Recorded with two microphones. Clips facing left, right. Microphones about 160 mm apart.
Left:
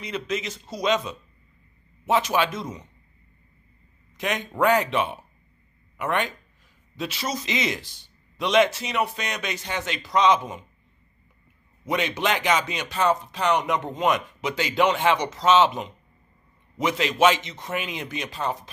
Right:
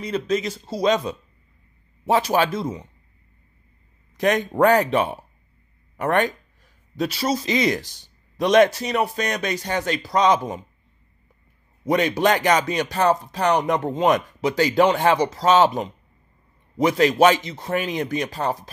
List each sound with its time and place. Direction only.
0.0 s speech: 35° right (ahead or behind)
4.2 s speech: 40° right (ahead or behind)
11.8 s speech: 40° right (ahead or behind)